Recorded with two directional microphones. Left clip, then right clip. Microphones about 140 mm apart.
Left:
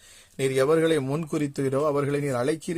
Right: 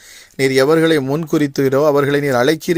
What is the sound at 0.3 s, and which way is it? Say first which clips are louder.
A man's voice: right 9 dB; 30° right (ahead or behind).